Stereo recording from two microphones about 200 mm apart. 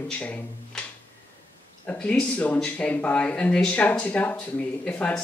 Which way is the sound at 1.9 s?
5° left (ahead or behind).